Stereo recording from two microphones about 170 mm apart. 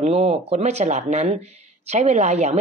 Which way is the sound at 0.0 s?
35° right (ahead or behind).